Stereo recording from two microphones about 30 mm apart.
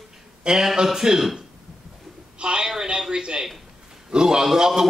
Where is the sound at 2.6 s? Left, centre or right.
Centre.